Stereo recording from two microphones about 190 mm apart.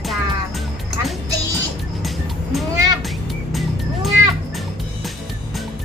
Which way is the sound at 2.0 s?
Centre (ahead or behind).